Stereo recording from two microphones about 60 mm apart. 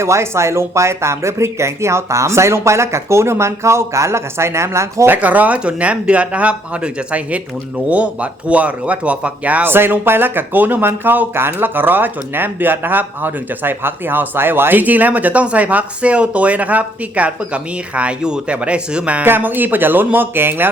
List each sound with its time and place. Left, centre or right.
0.0 s speech: right
5.0 s speech: right
9.6 s speech: right; by 19.2 s centre
19.2 s speech: right